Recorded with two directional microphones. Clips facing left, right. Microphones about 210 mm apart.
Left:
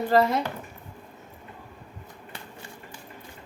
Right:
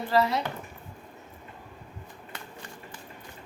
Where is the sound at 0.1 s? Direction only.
50° left (ahead or behind).